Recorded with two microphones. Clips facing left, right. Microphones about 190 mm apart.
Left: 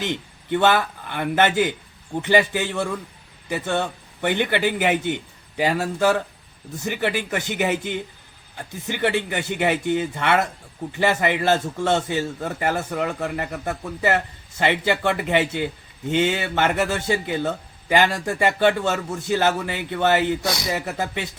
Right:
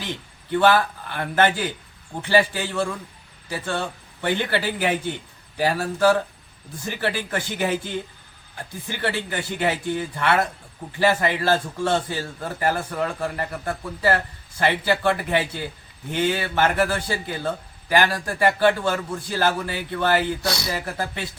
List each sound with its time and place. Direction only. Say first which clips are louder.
0.0 s a man's voice: left 5 dB; 20° left (ahead or behind)